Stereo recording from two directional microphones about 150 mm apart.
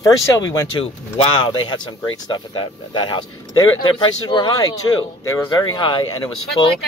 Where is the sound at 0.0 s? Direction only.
25° left (ahead or behind).